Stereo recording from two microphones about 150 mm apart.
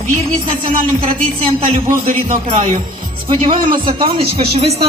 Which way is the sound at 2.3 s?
45° right (ahead or behind).